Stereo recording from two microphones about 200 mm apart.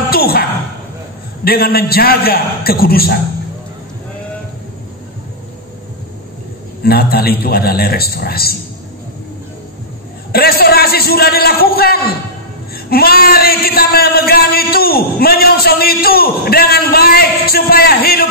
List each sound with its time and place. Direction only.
0.1 s a sound: 50° left (ahead or behind)
1.4 s a man's voice: 50° left (ahead or behind)
6.8 s a man's voice: 50° left (ahead or behind)
10.3 s a man's voice: 50° left (ahead or behind)